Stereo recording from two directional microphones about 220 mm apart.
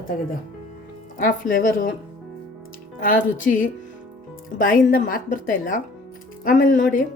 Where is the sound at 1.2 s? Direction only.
40° left (ahead or behind).